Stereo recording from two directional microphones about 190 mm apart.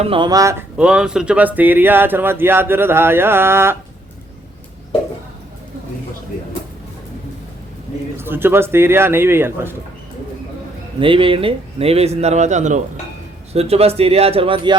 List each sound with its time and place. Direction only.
0.0 s speech: 25° right (ahead or behind)
0.8 s speech: 5° right (ahead or behind)
8.2 s speech: 10° right (ahead or behind)
11.0 s speech: 30° right (ahead or behind)